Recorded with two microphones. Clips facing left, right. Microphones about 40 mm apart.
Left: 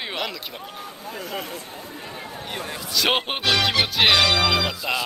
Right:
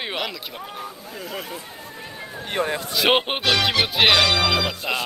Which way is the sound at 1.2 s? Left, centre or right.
Centre.